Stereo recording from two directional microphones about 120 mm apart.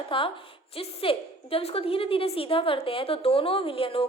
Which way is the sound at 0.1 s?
45° left (ahead or behind).